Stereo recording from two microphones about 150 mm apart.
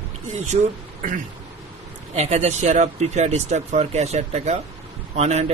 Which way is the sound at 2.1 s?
45° right (ahead or behind).